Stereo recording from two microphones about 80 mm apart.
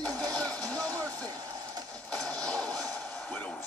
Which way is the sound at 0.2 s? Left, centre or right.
Centre.